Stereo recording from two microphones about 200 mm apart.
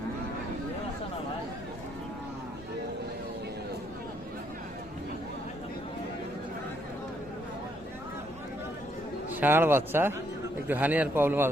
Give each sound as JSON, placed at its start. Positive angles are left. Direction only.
{"t": 9.3, "sound": "speech", "side_deg": -10}